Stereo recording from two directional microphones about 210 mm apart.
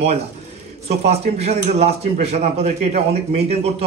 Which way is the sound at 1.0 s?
30° right (ahead or behind).